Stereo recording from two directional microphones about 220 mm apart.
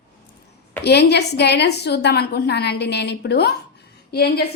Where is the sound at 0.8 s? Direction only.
50° left (ahead or behind).